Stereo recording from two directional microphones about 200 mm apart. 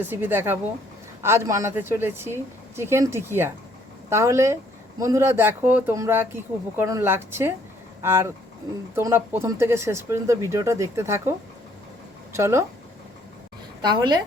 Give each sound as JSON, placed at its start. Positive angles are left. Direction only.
{"t": 0.0, "sound": "speech", "side_deg": -10}
{"t": 13.8, "sound": "a woman's voice", "side_deg": -20}